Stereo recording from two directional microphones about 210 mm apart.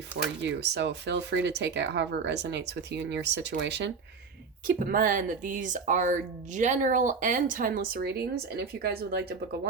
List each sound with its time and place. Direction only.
0.4 s speech: 55° right (ahead or behind)
4.6 s speech: 40° right (ahead or behind)